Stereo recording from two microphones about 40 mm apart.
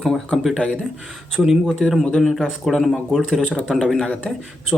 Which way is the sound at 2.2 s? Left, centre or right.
Centre.